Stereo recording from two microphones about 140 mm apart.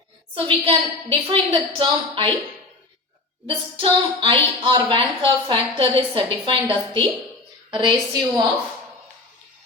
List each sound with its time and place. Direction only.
0.3 s a woman's voice: 40° right (ahead or behind)
3.4 s a woman's voice: 40° right (ahead or behind)